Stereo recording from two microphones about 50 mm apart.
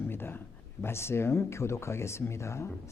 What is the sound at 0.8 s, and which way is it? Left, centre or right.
Speech, left.